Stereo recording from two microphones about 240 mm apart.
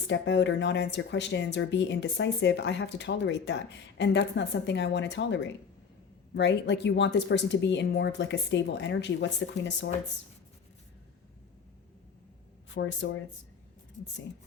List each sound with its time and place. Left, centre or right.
0.1 s speech: left
12.7 s speech: left